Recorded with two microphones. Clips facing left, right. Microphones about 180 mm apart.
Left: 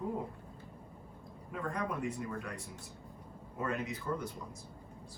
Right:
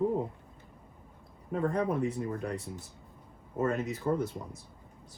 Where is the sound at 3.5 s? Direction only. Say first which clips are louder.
Right 6 dB; 40° right (ahead or behind).